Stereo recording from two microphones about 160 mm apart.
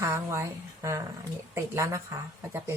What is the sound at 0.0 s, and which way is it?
Speech, 15° right (ahead or behind).